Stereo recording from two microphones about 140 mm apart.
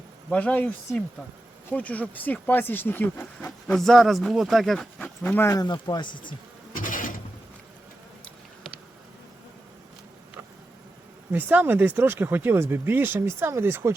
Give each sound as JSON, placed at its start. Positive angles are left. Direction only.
{"t": 0.3, "sound": "speech", "side_deg": 10}
{"t": 3.8, "sound": "speech", "side_deg": 0}
{"t": 5.6, "sound": "speech", "side_deg": 30}
{"t": 6.7, "sound": "a sound", "side_deg": 75}
{"t": 11.3, "sound": "speech", "side_deg": -15}